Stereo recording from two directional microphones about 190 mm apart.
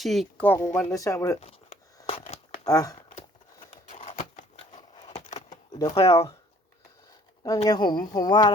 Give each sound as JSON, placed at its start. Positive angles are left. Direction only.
{"t": 0.0, "sound": "speech", "side_deg": 0}
{"t": 1.4, "sound": "a sound", "side_deg": 35}
{"t": 2.0, "sound": "crumpling", "side_deg": 30}
{"t": 3.9, "sound": "a sound", "side_deg": 40}
{"t": 5.8, "sound": "speech", "side_deg": 30}
{"t": 6.1, "sound": "speech", "side_deg": 15}
{"t": 7.4, "sound": "speech", "side_deg": 20}